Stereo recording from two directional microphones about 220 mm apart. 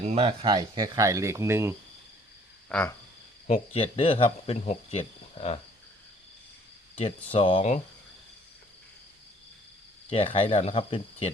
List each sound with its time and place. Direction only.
0.0 s speech: 30° right (ahead or behind); by 1.7 s 10° right (ahead or behind)
2.6 s speech: 5° left (ahead or behind)
3.4 s speech: 30° left (ahead or behind)
7.0 s speech: 25° left (ahead or behind)
10.1 s speech: 25° left (ahead or behind)